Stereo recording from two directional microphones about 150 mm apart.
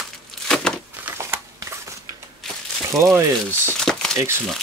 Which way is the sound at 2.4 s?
Centre (ahead or behind).